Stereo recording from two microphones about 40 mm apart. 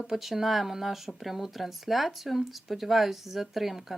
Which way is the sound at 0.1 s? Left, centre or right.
Centre.